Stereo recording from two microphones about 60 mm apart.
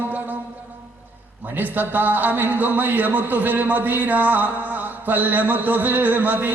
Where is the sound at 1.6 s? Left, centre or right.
Right.